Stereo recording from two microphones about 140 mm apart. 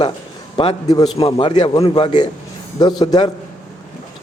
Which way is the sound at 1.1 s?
40° left (ahead or behind).